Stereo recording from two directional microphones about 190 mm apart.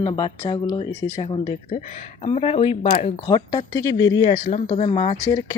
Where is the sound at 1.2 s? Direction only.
30° left (ahead or behind).